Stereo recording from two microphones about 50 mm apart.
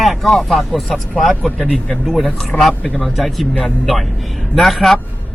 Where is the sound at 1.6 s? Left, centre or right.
Centre.